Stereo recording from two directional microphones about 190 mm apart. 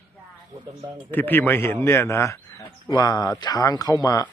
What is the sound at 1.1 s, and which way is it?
Speech, 10° left (ahead or behind).